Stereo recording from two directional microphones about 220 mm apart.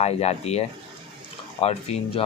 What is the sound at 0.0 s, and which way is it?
Speech, 30° left (ahead or behind).